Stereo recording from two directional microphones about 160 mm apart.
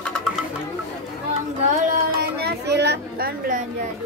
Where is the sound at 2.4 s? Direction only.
90° right.